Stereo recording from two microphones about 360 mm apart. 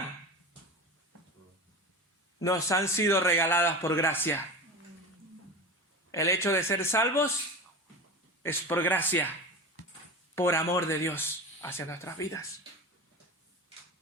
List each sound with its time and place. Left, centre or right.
2.4 s speech: centre
6.1 s speech: centre
8.4 s speech: centre
10.3 s speech: centre